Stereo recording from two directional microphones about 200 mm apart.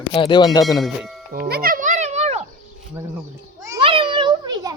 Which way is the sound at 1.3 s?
50° right (ahead or behind).